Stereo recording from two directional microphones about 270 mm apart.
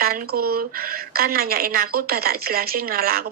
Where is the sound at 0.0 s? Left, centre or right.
Right.